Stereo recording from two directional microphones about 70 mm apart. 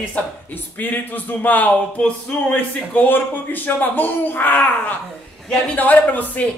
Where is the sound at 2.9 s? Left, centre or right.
Left.